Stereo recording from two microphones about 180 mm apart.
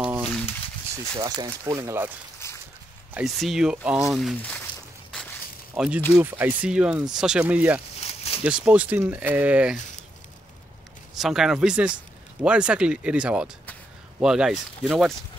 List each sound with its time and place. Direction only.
1.1 s speech: 20° right (ahead or behind)
2.4 s a sound: 15° left (ahead or behind)
3.2 s speech: centre (ahead or behind)
5.8 s speech: 5° right (ahead or behind)
8.0 s a sound: 35° left (ahead or behind)
8.5 s speech: 5° right (ahead or behind)
11.1 s speech: centre (ahead or behind)